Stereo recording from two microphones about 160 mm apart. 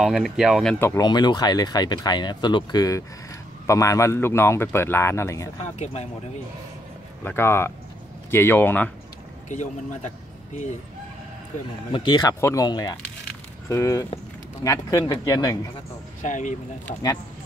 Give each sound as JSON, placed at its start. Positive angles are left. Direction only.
{"t": 0.0, "sound": "speech", "side_deg": 0}
{"t": 0.7, "sound": "a man's voice", "side_deg": 15}
{"t": 1.0, "sound": "a man's voice", "side_deg": 25}
{"t": 7.2, "sound": "a man's voice", "side_deg": 15}
{"t": 9.5, "sound": "a man's voice", "side_deg": 50}
{"t": 11.9, "sound": "speech", "side_deg": 25}
{"t": 16.2, "sound": "speech", "side_deg": 50}